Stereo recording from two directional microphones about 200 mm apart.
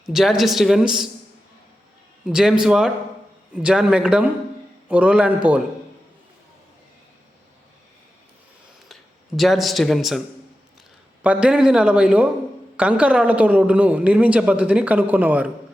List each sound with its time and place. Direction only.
0.0 s a man's voice: centre (ahead or behind)
2.2 s a man's voice: 5° right (ahead or behind)
8.9 s a man's voice: centre (ahead or behind)